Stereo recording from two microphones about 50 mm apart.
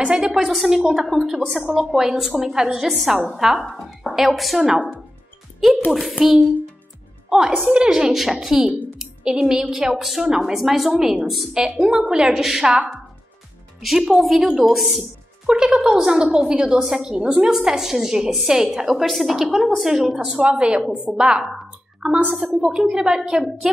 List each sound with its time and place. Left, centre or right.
0.0 s a woman's voice: centre
0.4 s a woman's voice: centre
5.9 s a woman's voice: centre
7.3 s a woman's voice: centre
11.5 s a woman's voice: right
13.7 s a woman's voice: centre
15.4 s a woman's voice: centre
20.3 s a woman's voice: right; by 23.8 s centre